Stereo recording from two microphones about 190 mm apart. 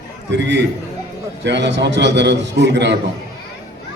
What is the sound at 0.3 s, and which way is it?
A man's voice, 65° right (ahead or behind).